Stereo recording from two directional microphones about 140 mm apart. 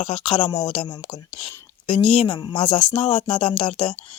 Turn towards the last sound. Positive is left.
turn(degrees=40)  # may be behind; listen again after turning